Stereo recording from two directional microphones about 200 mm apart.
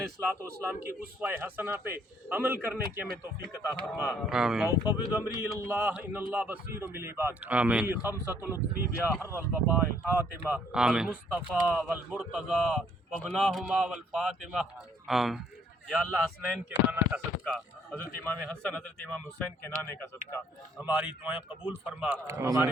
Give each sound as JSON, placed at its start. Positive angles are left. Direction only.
{"t": 0.2, "sound": "a man's voice", "side_deg": -10}
{"t": 3.5, "sound": "speech", "side_deg": 15}
{"t": 4.3, "sound": "speech", "side_deg": 0}
{"t": 4.9, "sound": "speech", "side_deg": 20}
{"t": 5.2, "sound": "a man's voice", "side_deg": -15}
{"t": 16.6, "sound": "a man's voice", "side_deg": -10}
{"t": 17.4, "sound": "speech", "side_deg": 5}
{"t": 20.8, "sound": "a man's voice", "side_deg": -5}